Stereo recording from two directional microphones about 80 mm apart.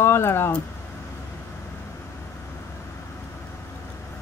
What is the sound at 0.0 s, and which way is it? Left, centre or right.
Speech, left.